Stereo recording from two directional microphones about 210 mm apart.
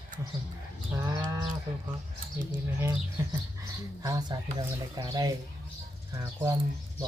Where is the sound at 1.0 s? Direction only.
15° right (ahead or behind).